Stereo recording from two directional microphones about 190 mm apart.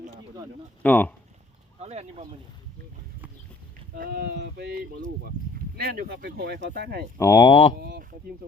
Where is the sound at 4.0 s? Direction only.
55° right (ahead or behind).